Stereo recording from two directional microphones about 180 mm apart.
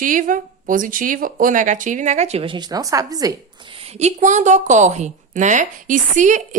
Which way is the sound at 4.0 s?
40° right (ahead or behind).